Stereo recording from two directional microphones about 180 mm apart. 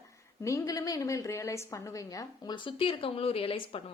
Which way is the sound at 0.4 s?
20° left (ahead or behind).